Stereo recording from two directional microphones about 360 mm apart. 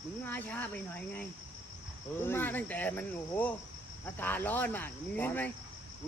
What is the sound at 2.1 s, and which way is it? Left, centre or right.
Speech, centre.